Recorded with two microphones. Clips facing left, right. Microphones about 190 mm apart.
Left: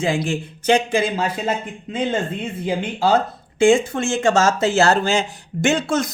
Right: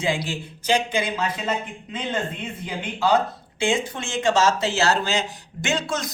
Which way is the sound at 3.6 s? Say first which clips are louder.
Left 9 dB; 50° left (ahead or behind).